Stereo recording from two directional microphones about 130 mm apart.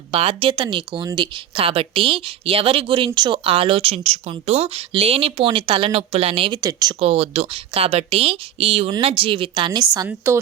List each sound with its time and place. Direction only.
0.1 s a woman's voice: 45° right (ahead or behind)
6.6 s speech: 30° right (ahead or behind)
7.0 s a woman's voice: 50° right (ahead or behind); by 10.1 s 35° right (ahead or behind)